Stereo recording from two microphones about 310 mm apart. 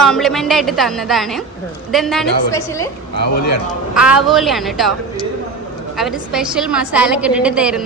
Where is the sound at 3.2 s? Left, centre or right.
Left.